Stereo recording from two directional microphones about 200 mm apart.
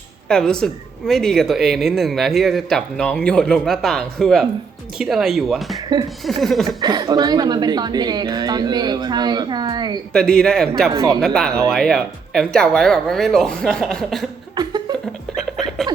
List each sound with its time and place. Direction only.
0.3 s a woman's voice: 5° left (ahead or behind)
6.7 s speech: 20° right (ahead or behind)
10.1 s a woman's voice: 5° left (ahead or behind)
10.9 s speech: 15° right (ahead or behind)
11.2 s a woman's voice: 5° left (ahead or behind)
14.5 s a sound: 20° right (ahead or behind)
15.4 s a sound: centre (ahead or behind)